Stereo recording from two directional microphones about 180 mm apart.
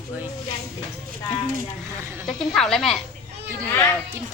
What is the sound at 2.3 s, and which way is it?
Speech, 5° left (ahead or behind).